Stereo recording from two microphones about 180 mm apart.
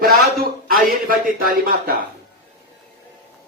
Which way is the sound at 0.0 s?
55° right (ahead or behind).